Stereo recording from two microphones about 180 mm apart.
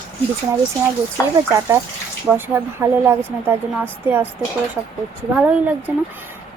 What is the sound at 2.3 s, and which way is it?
Speech, 10° right (ahead or behind).